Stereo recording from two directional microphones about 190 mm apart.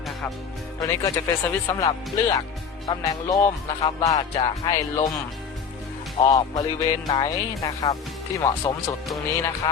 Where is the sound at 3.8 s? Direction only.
20° left (ahead or behind).